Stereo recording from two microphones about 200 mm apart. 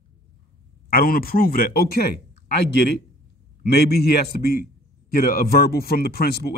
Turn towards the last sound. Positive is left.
turn(degrees=50)  # may be behind; listen again after turning